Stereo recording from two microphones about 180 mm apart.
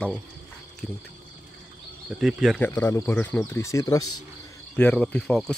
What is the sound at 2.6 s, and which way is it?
Speech, 15° left (ahead or behind).